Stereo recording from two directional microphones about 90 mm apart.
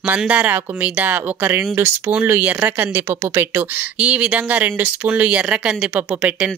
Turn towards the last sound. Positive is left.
turn(degrees=-15)  # may be behind; listen again after turning